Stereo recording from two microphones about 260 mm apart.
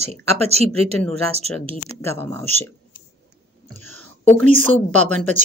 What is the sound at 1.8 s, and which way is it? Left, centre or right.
Speech, centre.